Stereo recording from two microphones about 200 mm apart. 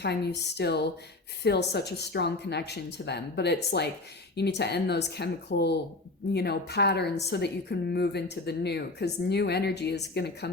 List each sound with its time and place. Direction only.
0.0 s a woman's voice: 55° left (ahead or behind)